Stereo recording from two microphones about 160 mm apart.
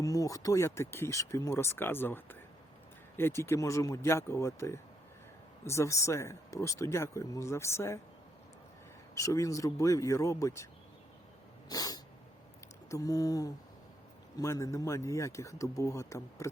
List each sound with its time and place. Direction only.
0.0 s speech: 20° left (ahead or behind)
9.1 s speech: 20° left (ahead or behind)
11.7 s cat: 25° left (ahead or behind)
12.9 s speech: 20° left (ahead or behind)